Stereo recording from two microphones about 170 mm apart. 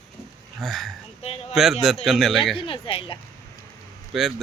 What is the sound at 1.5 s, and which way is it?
A man's voice, centre (ahead or behind).